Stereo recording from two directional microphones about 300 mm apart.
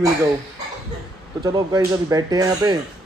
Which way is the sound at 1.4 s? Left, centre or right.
Centre.